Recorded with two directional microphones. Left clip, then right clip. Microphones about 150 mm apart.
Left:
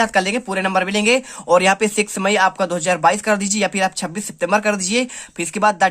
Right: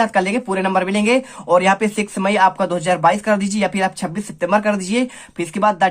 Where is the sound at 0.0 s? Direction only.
30° left (ahead or behind).